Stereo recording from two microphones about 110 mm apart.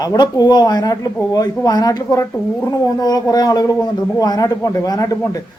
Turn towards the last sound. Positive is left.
turn(degrees=30)  # may be behind; listen again after turning